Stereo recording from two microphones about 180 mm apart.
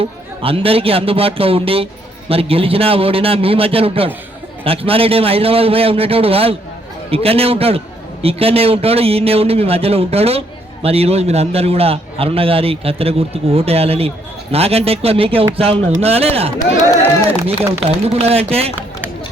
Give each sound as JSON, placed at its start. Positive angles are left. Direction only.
{"t": 0.0, "sound": "a man's voice", "side_deg": -30}